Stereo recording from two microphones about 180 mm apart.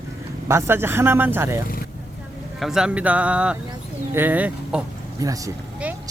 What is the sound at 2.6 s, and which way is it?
Speech, centre (ahead or behind).